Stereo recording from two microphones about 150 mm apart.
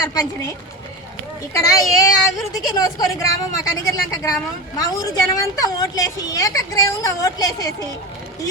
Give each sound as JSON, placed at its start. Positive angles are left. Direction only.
{"t": 0.0, "sound": "speech", "side_deg": 25}
{"t": 1.5, "sound": "a woman's voice", "side_deg": 25}